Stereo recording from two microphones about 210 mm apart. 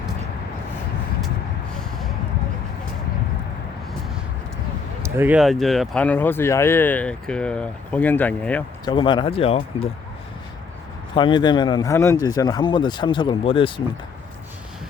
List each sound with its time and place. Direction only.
5.0 s speech: 10° right (ahead or behind); by 8.6 s 5° left (ahead or behind)
8.8 s speech: 20° left (ahead or behind)
11.1 s speech: 25° left (ahead or behind)